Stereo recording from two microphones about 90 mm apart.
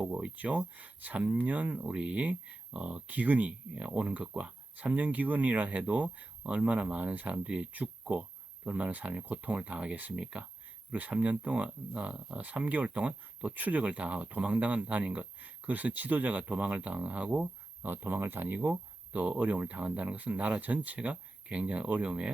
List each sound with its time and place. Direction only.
0.0 s speech: 15° right (ahead or behind)